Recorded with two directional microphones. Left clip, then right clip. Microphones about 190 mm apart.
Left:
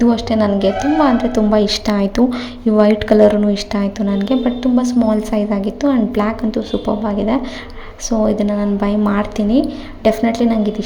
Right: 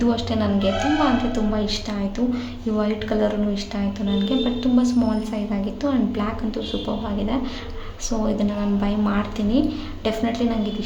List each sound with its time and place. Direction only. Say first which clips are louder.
0.0 s a woman's voice: left 8 dB; 30° left (ahead or behind)